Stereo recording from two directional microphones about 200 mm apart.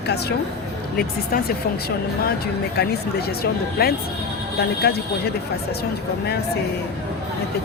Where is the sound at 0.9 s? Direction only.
50° left (ahead or behind).